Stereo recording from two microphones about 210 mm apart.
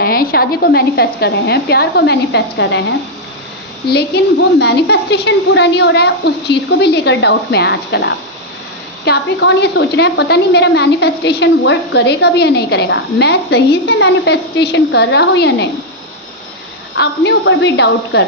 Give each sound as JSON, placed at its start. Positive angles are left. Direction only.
{"t": 0.0, "sound": "a woman's voice", "side_deg": 45}
{"t": 3.8, "sound": "a woman's voice", "side_deg": 50}
{"t": 17.0, "sound": "a woman's voice", "side_deg": 55}